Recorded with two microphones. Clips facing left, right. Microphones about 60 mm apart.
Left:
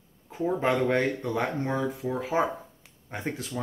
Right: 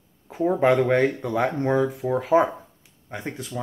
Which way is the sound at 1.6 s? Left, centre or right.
Right.